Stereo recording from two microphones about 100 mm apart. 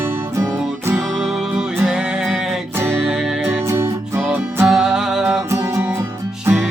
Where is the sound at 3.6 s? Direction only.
25° right (ahead or behind).